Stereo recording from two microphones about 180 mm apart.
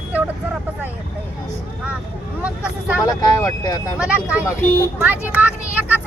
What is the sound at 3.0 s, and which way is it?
Speech, 20° left (ahead or behind).